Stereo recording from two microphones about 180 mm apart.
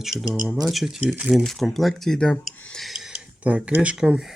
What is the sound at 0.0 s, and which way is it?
Speech, centre (ahead or behind).